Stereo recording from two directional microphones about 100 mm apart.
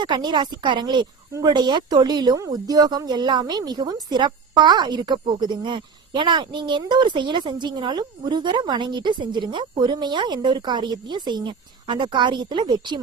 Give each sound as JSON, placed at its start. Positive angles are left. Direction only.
{"t": 0.0, "sound": "a child's voice", "side_deg": -50}